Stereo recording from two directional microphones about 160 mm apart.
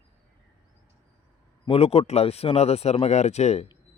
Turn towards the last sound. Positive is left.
turn(degrees=45)  # may be behind; listen again after turning